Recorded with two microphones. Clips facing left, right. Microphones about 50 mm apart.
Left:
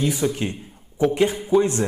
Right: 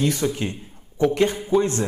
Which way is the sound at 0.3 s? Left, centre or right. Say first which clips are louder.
Left 1 dB; left.